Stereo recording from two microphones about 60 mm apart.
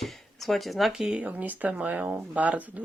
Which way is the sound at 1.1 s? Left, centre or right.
Right.